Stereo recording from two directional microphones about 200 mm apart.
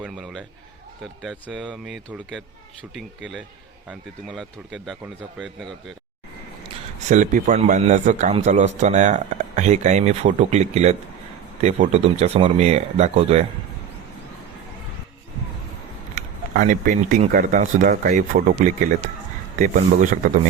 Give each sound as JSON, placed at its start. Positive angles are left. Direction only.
{"t": 0.0, "sound": "a sound", "side_deg": 0}
{"t": 1.2, "sound": "speech", "side_deg": 0}
{"t": 3.8, "sound": "speech", "side_deg": 0}
{"t": 7.1, "sound": "a man's voice", "side_deg": -40}
{"t": 16.1, "sound": "a man's voice", "side_deg": -40}